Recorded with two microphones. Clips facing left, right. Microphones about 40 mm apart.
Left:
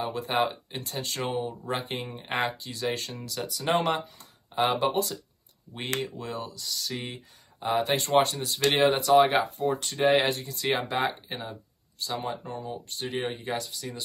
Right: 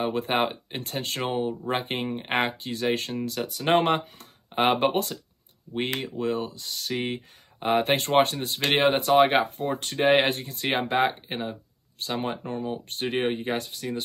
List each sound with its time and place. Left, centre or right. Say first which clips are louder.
0.0 s speech: right 2 dB; right
5.9 s speech: right 2 dB; right